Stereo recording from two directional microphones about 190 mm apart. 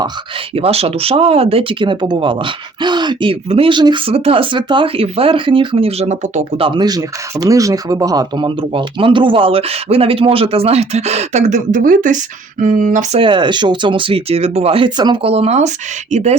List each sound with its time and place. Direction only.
0.5 s speech: 30° right (ahead or behind)
6.7 s speech: 20° right (ahead or behind); by 13.2 s 40° right (ahead or behind)
13.2 s speech: 25° right (ahead or behind)